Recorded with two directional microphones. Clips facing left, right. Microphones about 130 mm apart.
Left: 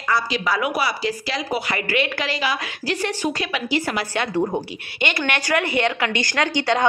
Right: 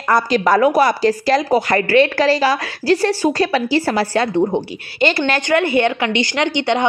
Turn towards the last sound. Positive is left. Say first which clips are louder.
# right 3 dB
turn(degrees=-25)  # may be behind; listen again after turning